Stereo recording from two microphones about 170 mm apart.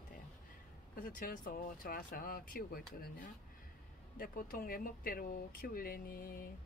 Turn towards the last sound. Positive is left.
turn(degrees=60)  # may be behind; listen again after turning